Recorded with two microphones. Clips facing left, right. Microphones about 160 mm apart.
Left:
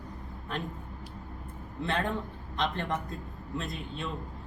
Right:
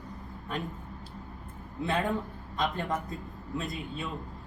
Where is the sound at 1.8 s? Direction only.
5° right (ahead or behind).